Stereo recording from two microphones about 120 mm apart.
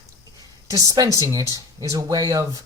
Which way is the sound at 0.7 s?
30° right (ahead or behind).